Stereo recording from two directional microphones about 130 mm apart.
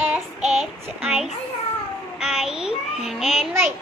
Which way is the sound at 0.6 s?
5° right (ahead or behind).